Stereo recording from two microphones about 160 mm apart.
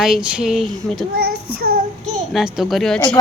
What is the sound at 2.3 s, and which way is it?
Speech, centre (ahead or behind).